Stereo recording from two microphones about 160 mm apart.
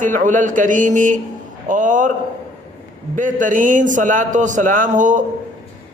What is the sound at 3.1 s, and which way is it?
A man's voice, 55° right (ahead or behind).